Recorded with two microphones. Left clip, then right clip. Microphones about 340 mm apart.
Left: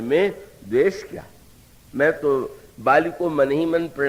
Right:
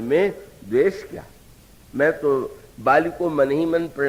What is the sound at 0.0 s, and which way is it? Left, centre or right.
A man's voice, right.